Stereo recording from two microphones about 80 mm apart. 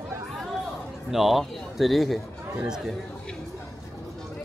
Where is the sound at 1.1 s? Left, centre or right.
Centre.